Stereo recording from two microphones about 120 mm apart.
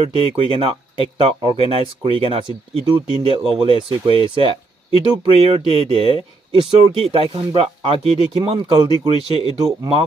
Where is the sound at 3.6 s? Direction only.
45° right (ahead or behind).